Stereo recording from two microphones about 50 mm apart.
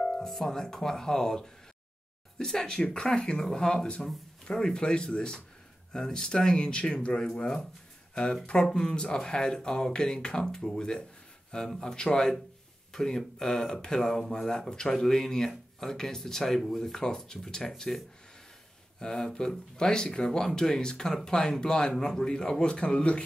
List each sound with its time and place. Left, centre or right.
0.0 s speech: centre
18.9 s speech: centre